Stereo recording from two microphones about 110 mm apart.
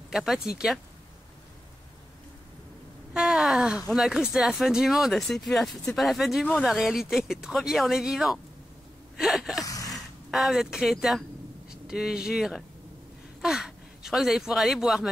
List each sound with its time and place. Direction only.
0.1 s speech: 5° right (ahead or behind)
3.1 s wail: 5° right (ahead or behind)
3.9 s speech: 5° right (ahead or behind)
9.1 s gasp: centre (ahead or behind)
9.6 s gasp: 30° left (ahead or behind)
10.3 s speech: 5° right (ahead or behind)